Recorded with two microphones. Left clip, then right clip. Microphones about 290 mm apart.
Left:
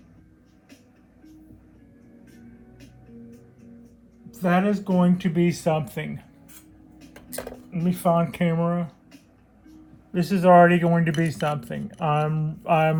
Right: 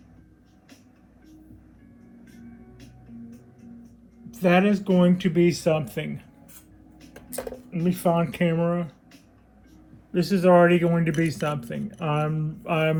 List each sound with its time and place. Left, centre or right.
4.5 s speech: centre
7.7 s speech: left
10.1 s speech: left